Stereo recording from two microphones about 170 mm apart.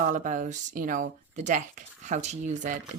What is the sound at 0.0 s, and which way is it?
Speech, 50° right (ahead or behind).